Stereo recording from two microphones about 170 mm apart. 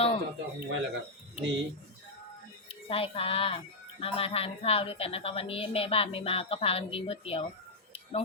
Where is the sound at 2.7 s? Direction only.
35° left (ahead or behind).